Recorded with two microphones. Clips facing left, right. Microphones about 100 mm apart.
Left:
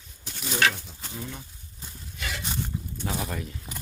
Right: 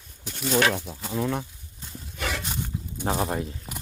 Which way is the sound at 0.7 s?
80° right.